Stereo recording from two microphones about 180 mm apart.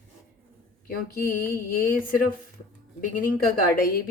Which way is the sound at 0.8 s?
55° left (ahead or behind).